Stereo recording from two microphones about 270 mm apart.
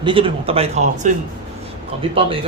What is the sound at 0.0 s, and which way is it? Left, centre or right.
Speech, centre.